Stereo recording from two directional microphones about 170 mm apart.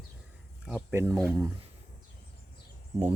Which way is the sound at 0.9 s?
15° right (ahead or behind).